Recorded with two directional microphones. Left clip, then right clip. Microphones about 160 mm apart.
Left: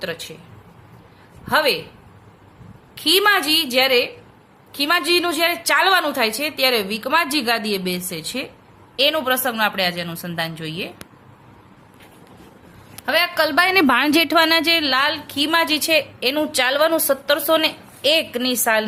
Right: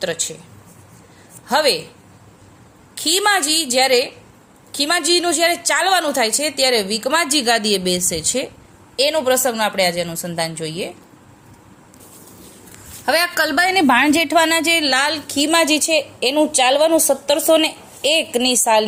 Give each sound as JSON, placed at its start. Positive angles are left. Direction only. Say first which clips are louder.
{"t": 0.0, "sound": "a woman's voice", "louder": "right 5 dB", "side_deg": -25}
{"t": 1.5, "sound": "a woman's voice", "louder": "right 2 dB", "side_deg": -20}
{"t": 2.9, "sound": "a woman's voice", "louder": "left 1 dB", "side_deg": -20}
{"t": 13.1, "sound": "a woman's voice", "louder": "right 1 dB", "side_deg": -30}
{"t": 14.1, "sound": "speech", "louder": "right 1 dB", "side_deg": 15}
{"t": 14.5, "sound": "a woman's voice", "louder": "even", "side_deg": 0}
{"t": 14.8, "sound": "a woman's voice", "louder": "right 1 dB", "side_deg": -20}